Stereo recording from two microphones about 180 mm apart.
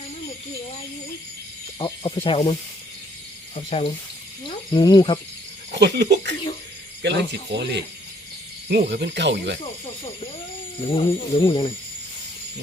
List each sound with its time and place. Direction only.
1.8 s speech: 30° left (ahead or behind)
5.7 s speech: 70° right (ahead or behind)
9.8 s speech: 30° left (ahead or behind)